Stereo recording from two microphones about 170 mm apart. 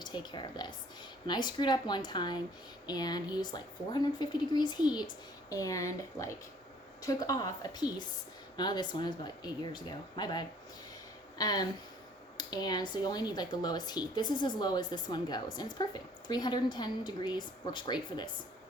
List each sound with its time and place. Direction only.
0.0 s speech: 25° left (ahead or behind)